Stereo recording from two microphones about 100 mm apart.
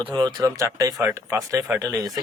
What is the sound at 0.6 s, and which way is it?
Speech, 30° right (ahead or behind).